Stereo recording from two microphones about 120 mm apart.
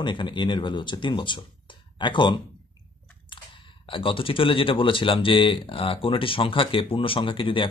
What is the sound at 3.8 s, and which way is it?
Speech, 45° left (ahead or behind).